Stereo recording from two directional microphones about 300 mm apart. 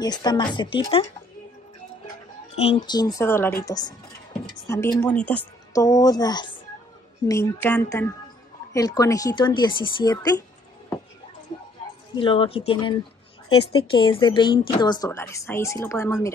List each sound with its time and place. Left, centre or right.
0.0 s speech: centre
2.5 s speech: centre
12.2 s speech: centre